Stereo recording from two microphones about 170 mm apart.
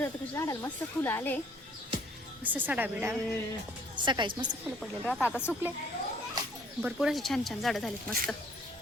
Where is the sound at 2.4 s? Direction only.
10° right (ahead or behind).